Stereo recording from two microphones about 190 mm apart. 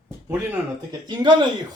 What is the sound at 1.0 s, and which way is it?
Speech, 25° right (ahead or behind).